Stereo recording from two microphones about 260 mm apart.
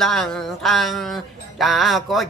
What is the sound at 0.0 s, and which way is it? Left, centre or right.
Speech, centre.